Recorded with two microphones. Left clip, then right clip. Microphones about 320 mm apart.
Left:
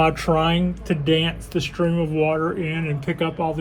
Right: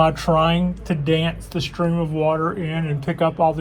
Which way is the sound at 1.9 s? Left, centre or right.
Right.